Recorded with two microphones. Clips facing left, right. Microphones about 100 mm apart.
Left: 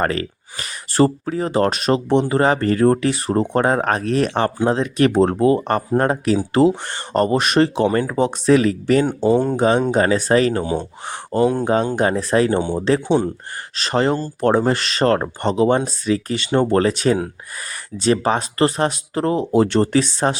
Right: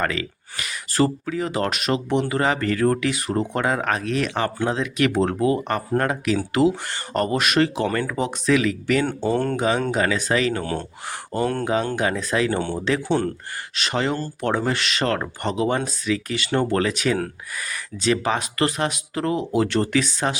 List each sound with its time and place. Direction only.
0.0 s speech: 40° left (ahead or behind)
9.0 s speech: 15° left (ahead or behind)
9.6 s speech: 35° left (ahead or behind)
10.6 s speech: 15° left (ahead or behind)
11.6 s speech: 30° left (ahead or behind)
12.5 s speech: 15° left (ahead or behind)
13.7 s speech: 35° left (ahead or behind)
16.5 s speech: 25° left (ahead or behind)